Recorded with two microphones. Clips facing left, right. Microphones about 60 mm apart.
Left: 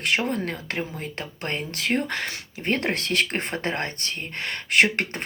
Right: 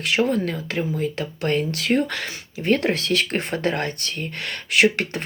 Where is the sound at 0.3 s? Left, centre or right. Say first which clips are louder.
Right 4 dB; left.